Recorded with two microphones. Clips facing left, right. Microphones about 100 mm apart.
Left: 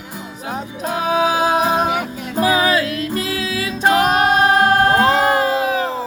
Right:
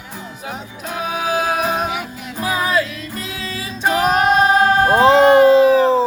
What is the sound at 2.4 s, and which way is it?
Music, 85° left.